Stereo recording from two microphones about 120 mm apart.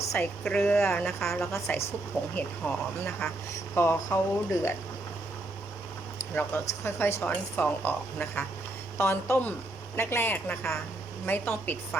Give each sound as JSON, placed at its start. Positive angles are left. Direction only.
{"t": 0.4, "sound": "speech", "side_deg": 5}
{"t": 0.8, "sound": "speech", "side_deg": 15}
{"t": 6.3, "sound": "speech", "side_deg": 20}